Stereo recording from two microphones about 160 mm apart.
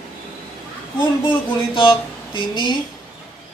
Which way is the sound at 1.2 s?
30° left (ahead or behind).